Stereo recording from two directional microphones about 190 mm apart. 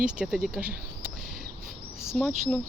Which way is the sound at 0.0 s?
5° right (ahead or behind).